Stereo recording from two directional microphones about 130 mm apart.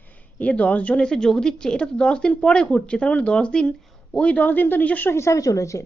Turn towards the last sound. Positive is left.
turn(degrees=25)  # may be behind; listen again after turning